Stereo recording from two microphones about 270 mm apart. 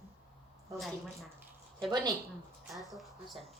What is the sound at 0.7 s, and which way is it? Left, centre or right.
Speech, centre.